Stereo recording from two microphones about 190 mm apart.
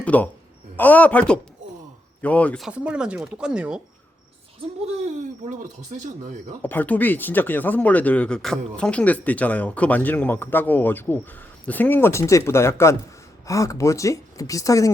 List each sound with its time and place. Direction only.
0.0 s speech: 10° left (ahead or behind)
2.6 s speech: 5° right (ahead or behind)
5.5 s speech: 40° right (ahead or behind)
6.6 s speech: 10° left (ahead or behind)